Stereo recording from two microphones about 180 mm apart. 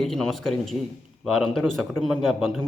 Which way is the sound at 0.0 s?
Centre (ahead or behind).